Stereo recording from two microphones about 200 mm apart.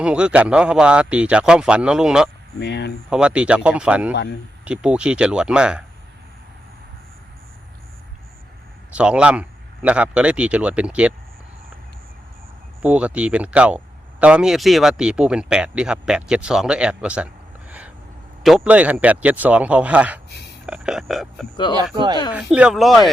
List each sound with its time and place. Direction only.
0.0 s speech: 5° right (ahead or behind)
2.6 s speech: 60° left (ahead or behind)
3.1 s speech: 5° right (ahead or behind)
4.1 s speech: 55° left (ahead or behind)
4.6 s speech: 5° right (ahead or behind)
8.9 s speech: 5° right (ahead or behind)
12.8 s speech: 5° right (ahead or behind)
17.7 s a sound: 5° right (ahead or behind)
18.4 s speech: 5° right (ahead or behind)
21.5 s speech: 20° left (ahead or behind)
21.9 s speech: 25° right (ahead or behind)
22.3 s speech: 5° right (ahead or behind)